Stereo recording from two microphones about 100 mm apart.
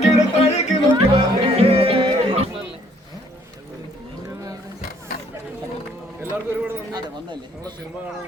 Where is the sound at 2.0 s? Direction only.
60° right (ahead or behind).